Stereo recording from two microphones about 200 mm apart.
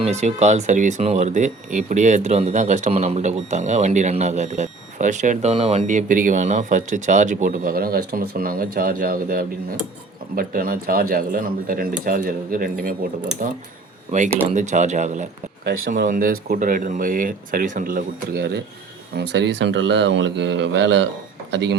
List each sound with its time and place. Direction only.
0.0 s speech: 35° right (ahead or behind)
14.1 s speech: 35° right (ahead or behind)
15.6 s speech: 50° right (ahead or behind)